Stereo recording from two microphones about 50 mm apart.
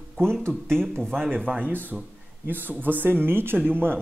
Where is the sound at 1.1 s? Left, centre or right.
Right.